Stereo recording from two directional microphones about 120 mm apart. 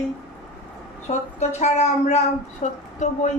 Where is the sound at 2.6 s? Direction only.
85° left.